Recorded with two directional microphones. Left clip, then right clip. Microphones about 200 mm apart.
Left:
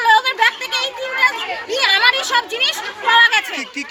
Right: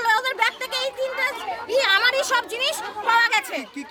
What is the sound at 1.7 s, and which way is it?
Speech, 25° right (ahead or behind).